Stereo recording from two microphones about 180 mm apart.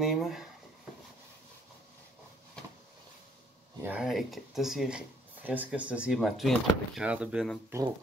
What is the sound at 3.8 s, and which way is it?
Speech, 5° right (ahead or behind).